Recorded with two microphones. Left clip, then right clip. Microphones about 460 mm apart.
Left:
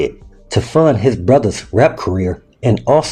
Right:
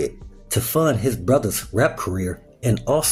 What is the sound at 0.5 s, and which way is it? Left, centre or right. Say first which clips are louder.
Speech: left 8 dB; right.